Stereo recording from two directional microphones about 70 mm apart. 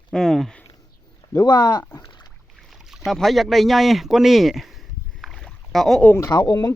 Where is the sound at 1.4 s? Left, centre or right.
Left.